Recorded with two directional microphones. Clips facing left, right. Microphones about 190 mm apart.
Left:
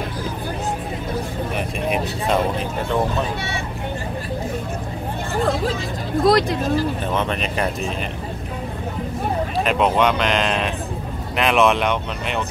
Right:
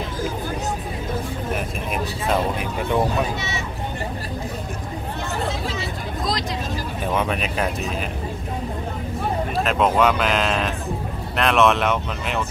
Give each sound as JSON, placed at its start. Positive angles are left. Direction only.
{"t": 1.9, "sound": "vehicle", "side_deg": 0}
{"t": 6.2, "sound": "speech", "side_deg": 55}
{"t": 7.2, "sound": "speech", "side_deg": -5}
{"t": 9.6, "sound": "speech", "side_deg": 0}